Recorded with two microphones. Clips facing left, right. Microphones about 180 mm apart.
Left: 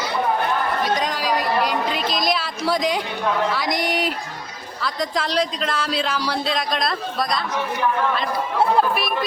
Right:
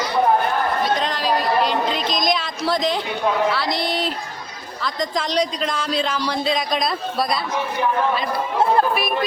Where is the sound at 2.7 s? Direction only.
10° left (ahead or behind).